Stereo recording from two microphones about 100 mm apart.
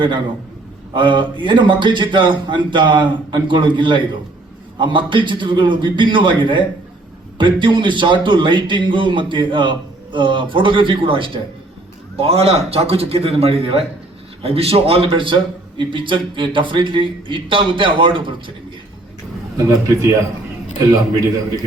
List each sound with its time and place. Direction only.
0.9 s a man's voice: 50° right (ahead or behind)
12.1 s a man's voice: 80° right; by 18.5 s 60° right (ahead or behind)
19.5 s a man's voice: 35° right (ahead or behind)